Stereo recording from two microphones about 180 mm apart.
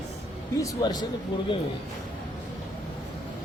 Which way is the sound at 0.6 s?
20° left (ahead or behind).